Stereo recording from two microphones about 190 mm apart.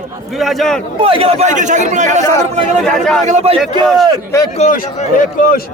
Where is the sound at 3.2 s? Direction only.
35° right (ahead or behind).